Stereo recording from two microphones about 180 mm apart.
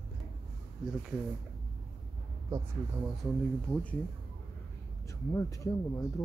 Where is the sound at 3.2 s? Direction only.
5° left (ahead or behind).